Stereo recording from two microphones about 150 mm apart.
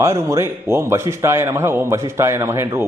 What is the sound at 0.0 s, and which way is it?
A man's voice, 20° right (ahead or behind).